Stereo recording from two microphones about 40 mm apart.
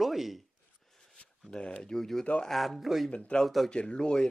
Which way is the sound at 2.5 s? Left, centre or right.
Centre.